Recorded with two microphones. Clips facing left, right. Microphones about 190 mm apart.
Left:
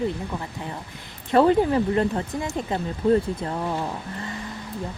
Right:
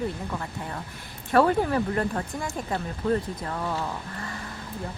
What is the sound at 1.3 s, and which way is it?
Speech, 20° left (ahead or behind).